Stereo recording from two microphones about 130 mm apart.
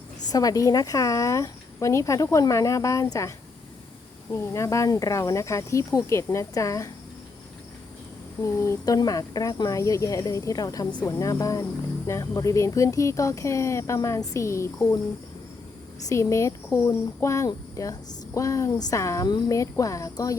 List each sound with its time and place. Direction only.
0.3 s speech: 30° left (ahead or behind)
8.5 s speech: 20° left (ahead or behind)
16.0 s speech: 20° left (ahead or behind)